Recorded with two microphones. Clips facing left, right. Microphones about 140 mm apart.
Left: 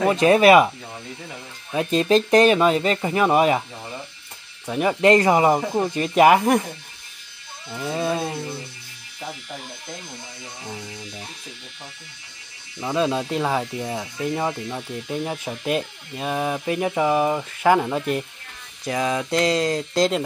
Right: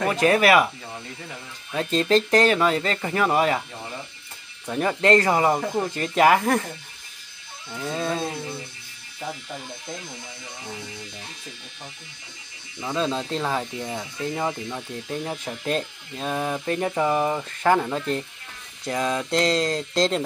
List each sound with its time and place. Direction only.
0.1 s speech: 20° left (ahead or behind)
1.7 s speech: 15° left (ahead or behind)
4.6 s speech: 10° left (ahead or behind)
7.9 s speech: 10° left (ahead or behind)
12.8 s speech: 15° left (ahead or behind)
14.5 s speech: 15° left (ahead or behind)